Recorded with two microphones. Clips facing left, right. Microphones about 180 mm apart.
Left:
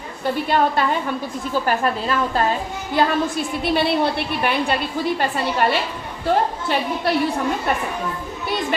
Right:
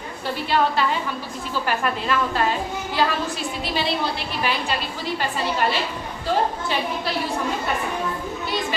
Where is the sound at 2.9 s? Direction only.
55° left (ahead or behind).